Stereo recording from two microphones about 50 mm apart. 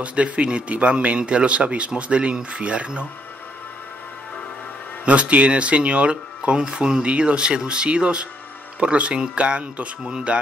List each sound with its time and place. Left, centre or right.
0.0 s speech: right
5.0 s speech: right